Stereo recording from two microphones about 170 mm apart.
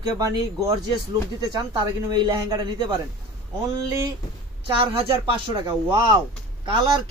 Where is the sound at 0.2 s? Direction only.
20° right (ahead or behind).